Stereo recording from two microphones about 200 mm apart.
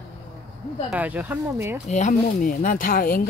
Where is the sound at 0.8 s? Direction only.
10° right (ahead or behind).